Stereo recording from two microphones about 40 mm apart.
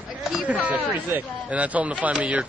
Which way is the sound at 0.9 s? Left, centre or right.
Right.